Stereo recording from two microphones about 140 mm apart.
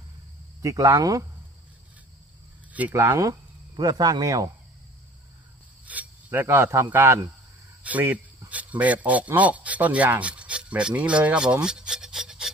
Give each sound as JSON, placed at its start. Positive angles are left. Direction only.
{"t": 0.6, "sound": "speech", "side_deg": -25}
{"t": 2.7, "sound": "speech", "side_deg": -15}
{"t": 5.9, "sound": "a sound", "side_deg": -10}
{"t": 6.4, "sound": "a man's voice", "side_deg": -20}